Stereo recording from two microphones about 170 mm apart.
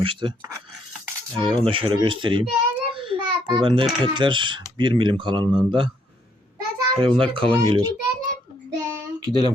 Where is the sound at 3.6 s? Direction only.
30° right (ahead or behind).